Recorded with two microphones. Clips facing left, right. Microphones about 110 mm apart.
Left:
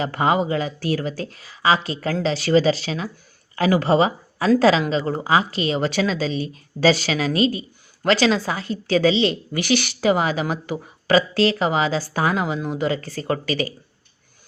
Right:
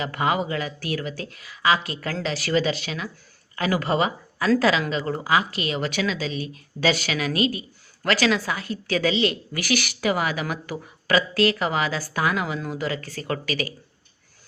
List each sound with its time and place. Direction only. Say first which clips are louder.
0.0 s a woman's voice: left 4 dB; 30° left (ahead or behind)